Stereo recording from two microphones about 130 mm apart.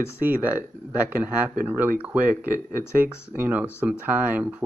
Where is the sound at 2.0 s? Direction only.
10° right (ahead or behind).